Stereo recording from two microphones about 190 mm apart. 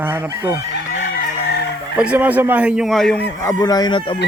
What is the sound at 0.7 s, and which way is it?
Chicken, 55° left (ahead or behind).